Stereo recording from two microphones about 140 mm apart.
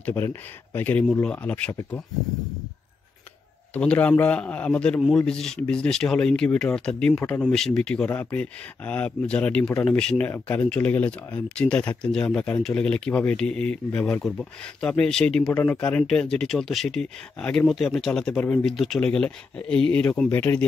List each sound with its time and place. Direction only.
0.0 s speech: 15° left (ahead or behind)
3.7 s speech: 10° left (ahead or behind)